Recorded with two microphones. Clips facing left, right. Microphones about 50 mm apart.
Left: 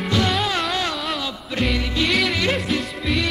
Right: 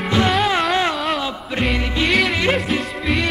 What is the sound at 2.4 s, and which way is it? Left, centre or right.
Music, centre.